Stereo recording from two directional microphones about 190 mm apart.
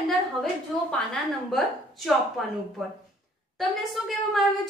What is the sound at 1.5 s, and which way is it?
A woman's voice, centre (ahead or behind).